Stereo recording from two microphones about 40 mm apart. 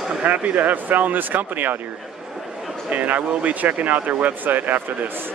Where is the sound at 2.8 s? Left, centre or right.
Right.